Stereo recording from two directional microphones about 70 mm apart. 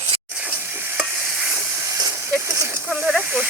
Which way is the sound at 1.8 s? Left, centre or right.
Right.